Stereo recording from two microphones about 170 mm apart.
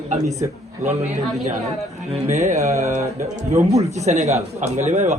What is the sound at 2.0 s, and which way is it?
A man's voice, 35° right (ahead or behind).